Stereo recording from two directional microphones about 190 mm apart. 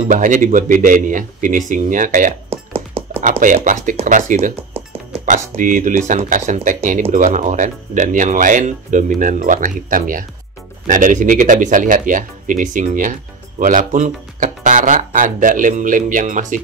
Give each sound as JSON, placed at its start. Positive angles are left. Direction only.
{"t": 0.0, "sound": "speech", "side_deg": -40}
{"t": 2.7, "sound": "a sound", "side_deg": -30}
{"t": 3.3, "sound": "speech", "side_deg": -45}